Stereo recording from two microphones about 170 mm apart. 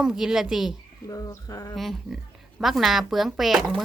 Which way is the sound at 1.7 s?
Centre (ahead or behind).